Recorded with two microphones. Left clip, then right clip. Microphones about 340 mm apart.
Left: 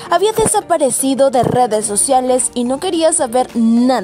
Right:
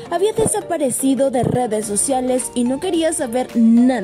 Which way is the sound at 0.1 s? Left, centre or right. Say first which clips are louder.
Left 5 dB; left.